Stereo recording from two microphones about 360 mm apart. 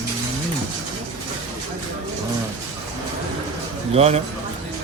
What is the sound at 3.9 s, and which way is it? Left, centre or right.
Speech, centre.